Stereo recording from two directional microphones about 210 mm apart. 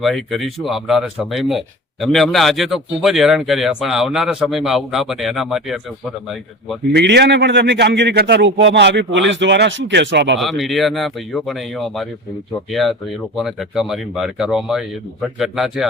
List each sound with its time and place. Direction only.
0.0 s speech: centre (ahead or behind)
6.9 s a man's voice: 50° right (ahead or behind)
10.4 s speech: centre (ahead or behind)
12.7 s speech: centre (ahead or behind)